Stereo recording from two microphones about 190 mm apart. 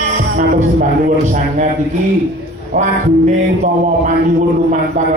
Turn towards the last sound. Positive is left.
turn(degrees=-45)  # may be behind; listen again after turning